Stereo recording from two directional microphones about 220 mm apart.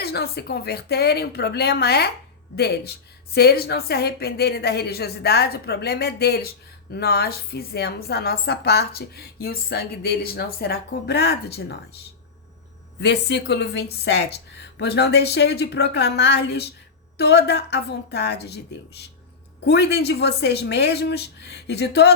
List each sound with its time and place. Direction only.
0.0 s a woman's voice: 45° left (ahead or behind)
13.0 s a woman's voice: 50° left (ahead or behind)